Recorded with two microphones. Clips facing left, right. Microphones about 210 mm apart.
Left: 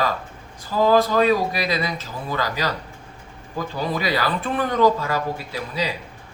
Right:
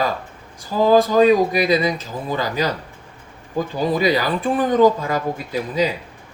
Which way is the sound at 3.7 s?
15° right (ahead or behind).